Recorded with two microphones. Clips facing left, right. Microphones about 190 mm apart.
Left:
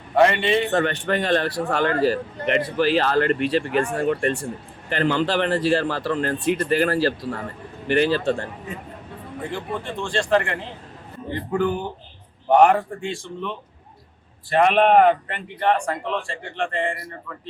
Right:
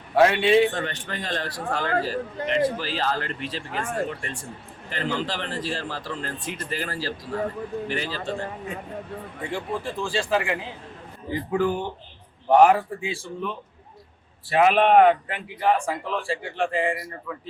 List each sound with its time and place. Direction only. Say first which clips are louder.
0.2 s speech: right 1 dB; centre (ahead or behind)
0.7 s a man's voice: left 9 dB; 70° left (ahead or behind)
9.5 s speech: right 1 dB; centre (ahead or behind)
14.5 s speech: left 1 dB; centre (ahead or behind)